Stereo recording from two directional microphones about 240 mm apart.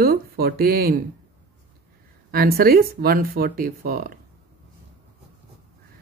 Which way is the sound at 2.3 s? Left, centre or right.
Right.